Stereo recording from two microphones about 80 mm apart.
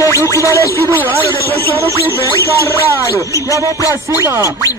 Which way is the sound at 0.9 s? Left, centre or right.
Right.